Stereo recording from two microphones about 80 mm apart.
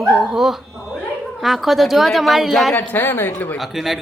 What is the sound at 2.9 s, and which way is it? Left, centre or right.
Speech, left.